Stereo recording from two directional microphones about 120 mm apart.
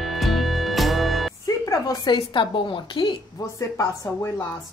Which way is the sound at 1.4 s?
30° left (ahead or behind).